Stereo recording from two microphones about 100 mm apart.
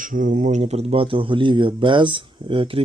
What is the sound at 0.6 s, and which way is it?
Speech, 80° right.